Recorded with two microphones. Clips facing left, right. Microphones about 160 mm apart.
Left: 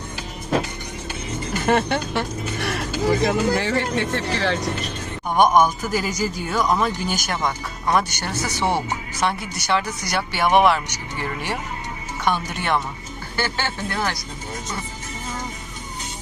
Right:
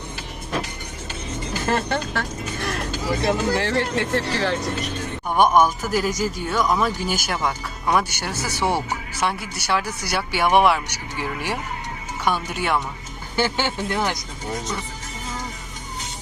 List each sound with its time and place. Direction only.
1.6 s speech: centre (ahead or behind)
13.3 s speech: 20° right (ahead or behind)